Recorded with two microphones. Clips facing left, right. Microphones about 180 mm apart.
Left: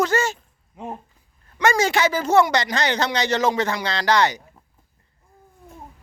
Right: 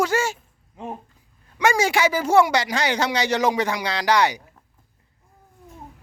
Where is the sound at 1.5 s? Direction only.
10° right (ahead or behind).